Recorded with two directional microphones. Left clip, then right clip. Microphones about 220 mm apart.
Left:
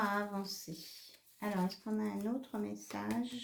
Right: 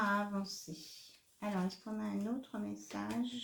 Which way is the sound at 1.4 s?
40° left (ahead or behind).